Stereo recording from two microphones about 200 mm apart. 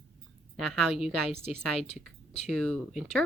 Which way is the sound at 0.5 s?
Centre (ahead or behind).